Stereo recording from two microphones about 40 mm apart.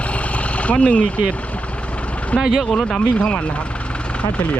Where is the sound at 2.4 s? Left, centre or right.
Centre.